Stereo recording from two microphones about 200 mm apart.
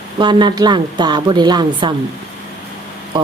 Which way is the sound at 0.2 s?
20° right (ahead or behind).